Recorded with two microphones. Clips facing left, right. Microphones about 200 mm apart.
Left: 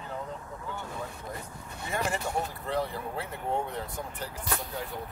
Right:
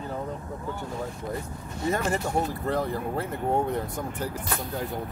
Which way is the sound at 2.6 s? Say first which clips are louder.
Right 4 dB; 45° right (ahead or behind).